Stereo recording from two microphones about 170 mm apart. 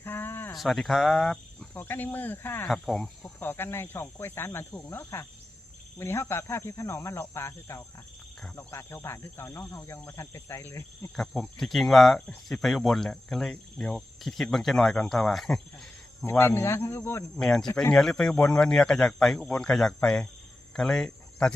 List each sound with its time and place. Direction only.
0.0 s a sound: 10° left (ahead or behind)
0.5 s speech: centre (ahead or behind)
2.6 s speech: centre (ahead or behind)
11.2 s speech: centre (ahead or behind)
16.2 s speech: 15° left (ahead or behind)
17.3 s speech: 5° left (ahead or behind)